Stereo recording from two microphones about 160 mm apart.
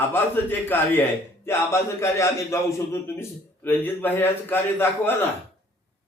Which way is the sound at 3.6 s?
15° left (ahead or behind).